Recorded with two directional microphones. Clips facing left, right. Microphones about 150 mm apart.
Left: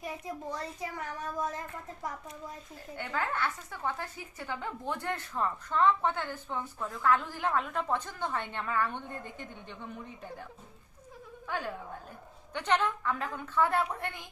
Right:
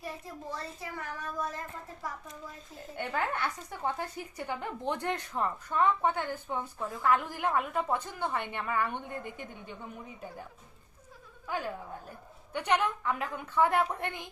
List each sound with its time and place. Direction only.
0.5 s a child's voice: 20° left (ahead or behind)
3.0 s a woman's voice: 20° right (ahead or behind)
12.5 s a woman's voice: 10° right (ahead or behind)